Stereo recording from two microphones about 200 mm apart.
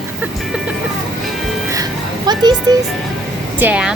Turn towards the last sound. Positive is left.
turn(degrees=-5)  # may be behind; listen again after turning